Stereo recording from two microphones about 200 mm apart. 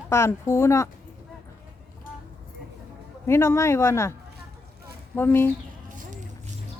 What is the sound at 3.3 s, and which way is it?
Speech, 10° left (ahead or behind).